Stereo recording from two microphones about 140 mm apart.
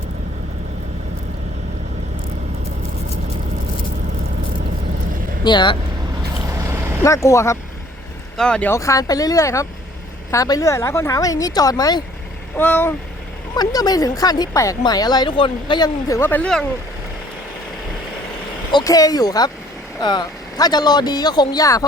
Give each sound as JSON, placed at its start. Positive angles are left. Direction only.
{"t": 5.4, "sound": "speech", "side_deg": 35}
{"t": 6.5, "sound": "vehicle", "side_deg": -20}
{"t": 7.0, "sound": "speech", "side_deg": 20}
{"t": 8.4, "sound": "vehicle", "side_deg": 5}
{"t": 8.7, "sound": "speech", "side_deg": 20}
{"t": 12.5, "sound": "vehicle", "side_deg": 15}
{"t": 13.6, "sound": "speech", "side_deg": 25}
{"t": 18.7, "sound": "speech", "side_deg": 30}